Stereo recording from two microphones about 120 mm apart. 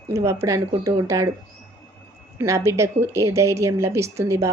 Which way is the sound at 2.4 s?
25° right (ahead or behind).